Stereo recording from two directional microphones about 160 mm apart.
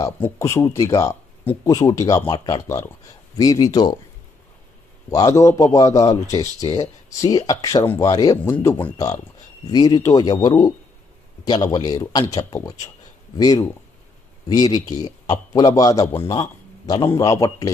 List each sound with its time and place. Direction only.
0.0 s speech: 20° left (ahead or behind)
5.0 s speech: 20° left (ahead or behind)
8.5 s speech: 10° left (ahead or behind)
9.0 s a man's voice: 20° left (ahead or behind)